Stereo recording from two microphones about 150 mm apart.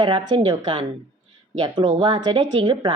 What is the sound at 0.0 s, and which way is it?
A woman's voice, 30° right (ahead or behind).